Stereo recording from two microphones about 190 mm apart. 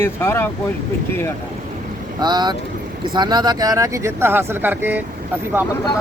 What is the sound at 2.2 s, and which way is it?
Speech, 20° right (ahead or behind).